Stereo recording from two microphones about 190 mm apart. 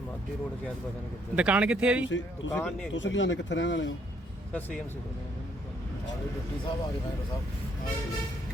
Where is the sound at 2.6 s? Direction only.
5° left (ahead or behind).